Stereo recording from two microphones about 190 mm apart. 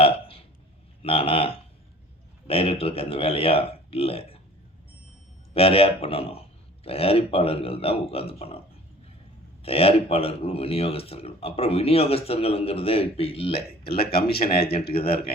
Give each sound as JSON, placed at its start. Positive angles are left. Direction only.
{"t": 0.0, "sound": "burping", "side_deg": 30}
{"t": 1.0, "sound": "speech", "side_deg": 30}
{"t": 5.5, "sound": "speech", "side_deg": 30}
{"t": 9.6, "sound": "speech", "side_deg": 30}
{"t": 14.0, "sound": "speech", "side_deg": 55}
{"t": 14.9, "sound": "speech", "side_deg": 30}